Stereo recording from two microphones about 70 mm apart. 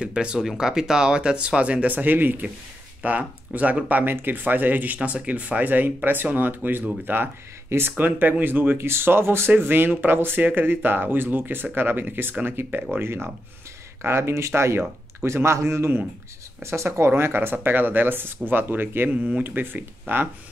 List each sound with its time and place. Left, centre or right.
0.0 s speech: centre; by 20.2 s right